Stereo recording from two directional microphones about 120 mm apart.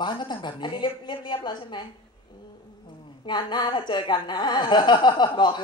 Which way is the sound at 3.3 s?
40° left (ahead or behind).